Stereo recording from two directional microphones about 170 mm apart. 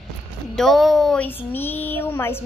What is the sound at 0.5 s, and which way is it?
Speech, centre (ahead or behind).